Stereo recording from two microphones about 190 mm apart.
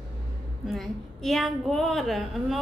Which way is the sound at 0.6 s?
Centre (ahead or behind).